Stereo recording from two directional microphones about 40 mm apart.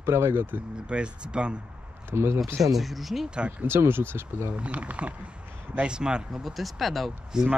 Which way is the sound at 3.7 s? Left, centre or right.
Right.